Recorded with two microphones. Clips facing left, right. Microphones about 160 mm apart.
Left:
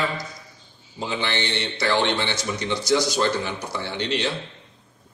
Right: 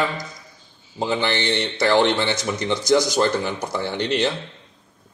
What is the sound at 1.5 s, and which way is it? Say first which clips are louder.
Speech: right 5 dB; 50° right (ahead or behind).